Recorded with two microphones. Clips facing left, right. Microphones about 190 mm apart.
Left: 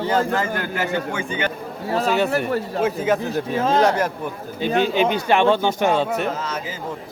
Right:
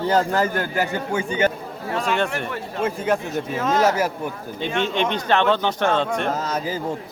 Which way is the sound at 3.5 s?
30° left (ahead or behind).